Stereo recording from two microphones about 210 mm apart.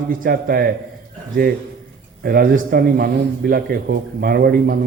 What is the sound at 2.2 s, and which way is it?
A woman's voice, 45° right (ahead or behind).